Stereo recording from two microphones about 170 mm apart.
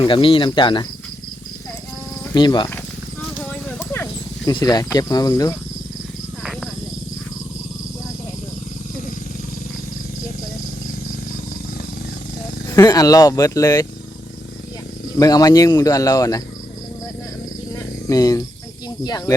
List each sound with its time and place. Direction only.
0.0 s speech: 30° left (ahead or behind)
2.3 s speech: 25° left (ahead or behind)
3.5 s horse: 10° left (ahead or behind)
4.4 s speech: 25° left (ahead or behind)
12.7 s speech: 20° left (ahead or behind)
15.2 s speech: 20° left (ahead or behind)
18.1 s speech: 20° left (ahead or behind)